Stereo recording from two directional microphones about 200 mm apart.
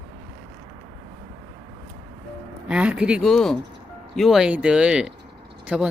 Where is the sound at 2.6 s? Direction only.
5° right (ahead or behind).